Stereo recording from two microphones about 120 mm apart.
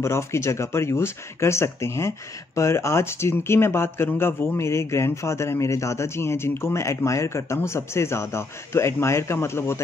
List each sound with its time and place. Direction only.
0.0 s speech: 25° left (ahead or behind)